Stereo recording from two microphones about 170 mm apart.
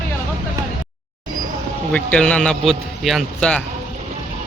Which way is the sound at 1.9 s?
5° left (ahead or behind).